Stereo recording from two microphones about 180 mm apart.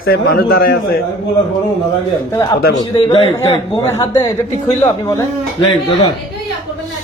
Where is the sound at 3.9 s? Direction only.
15° left (ahead or behind).